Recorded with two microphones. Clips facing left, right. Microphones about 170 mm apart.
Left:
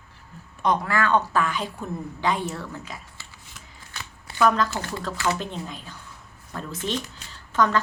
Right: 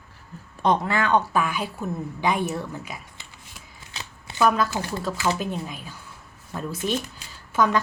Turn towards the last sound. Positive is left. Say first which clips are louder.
# right 1 dB
turn(degrees=-10)  # may be behind; listen again after turning